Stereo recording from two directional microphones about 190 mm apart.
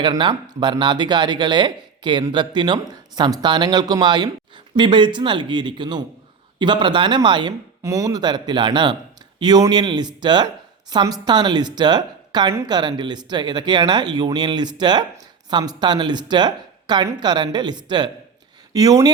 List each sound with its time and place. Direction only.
0.0 s a woman's voice: 25° right (ahead or behind)